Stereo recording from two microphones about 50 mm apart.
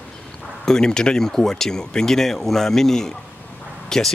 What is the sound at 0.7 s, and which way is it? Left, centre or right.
Speech, centre.